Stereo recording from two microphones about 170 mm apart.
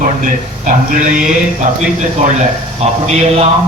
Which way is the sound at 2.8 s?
40° right (ahead or behind).